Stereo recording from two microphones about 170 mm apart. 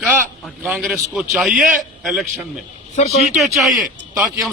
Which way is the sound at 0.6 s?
5° right (ahead or behind).